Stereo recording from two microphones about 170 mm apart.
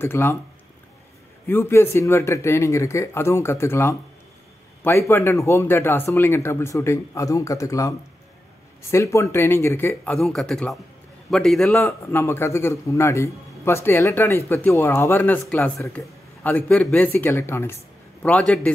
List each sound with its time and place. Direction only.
0.0 s a man's voice: 15° left (ahead or behind)
1.5 s a man's voice: 15° left (ahead or behind)
8.9 s a man's voice: 15° left (ahead or behind)
10.1 s speech: centre (ahead or behind)
11.8 s a man's voice: 15° left (ahead or behind)